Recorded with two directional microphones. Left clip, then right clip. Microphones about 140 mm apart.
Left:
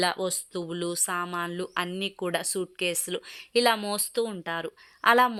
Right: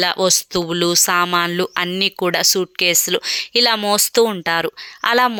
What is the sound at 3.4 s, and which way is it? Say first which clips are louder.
A woman's voice: right 5 dB; 20° right (ahead or behind).